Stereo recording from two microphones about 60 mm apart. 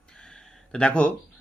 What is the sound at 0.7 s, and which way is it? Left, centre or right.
Speech, centre.